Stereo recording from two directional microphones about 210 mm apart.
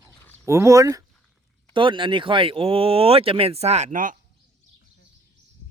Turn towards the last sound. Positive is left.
turn(degrees=-40)  # may be behind; listen again after turning